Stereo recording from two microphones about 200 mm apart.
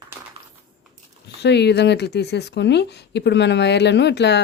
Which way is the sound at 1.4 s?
55° left (ahead or behind).